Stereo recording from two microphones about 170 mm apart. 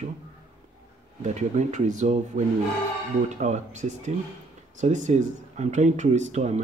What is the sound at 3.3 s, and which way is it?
Speech, 45° right (ahead or behind).